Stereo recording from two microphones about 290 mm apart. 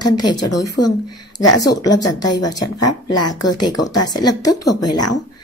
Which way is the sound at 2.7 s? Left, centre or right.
Left.